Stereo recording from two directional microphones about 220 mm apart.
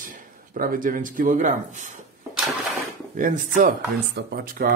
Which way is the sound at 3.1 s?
35° right (ahead or behind).